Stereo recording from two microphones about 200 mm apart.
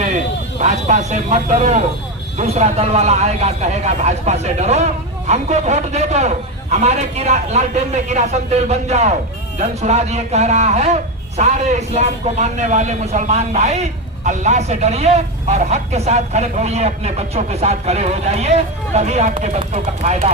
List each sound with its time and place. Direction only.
0.6 s speech: 35° right (ahead or behind)